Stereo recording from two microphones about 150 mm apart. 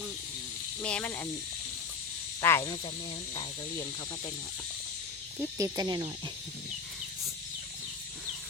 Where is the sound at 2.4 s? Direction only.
15° left (ahead or behind).